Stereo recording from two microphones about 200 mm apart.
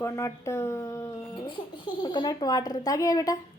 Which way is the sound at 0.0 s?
15° left (ahead or behind).